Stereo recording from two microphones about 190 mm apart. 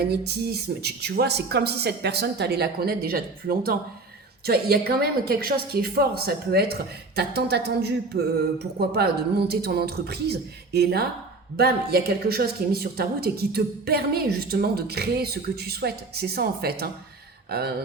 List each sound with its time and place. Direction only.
0.0 s a woman's voice: 55° right (ahead or behind)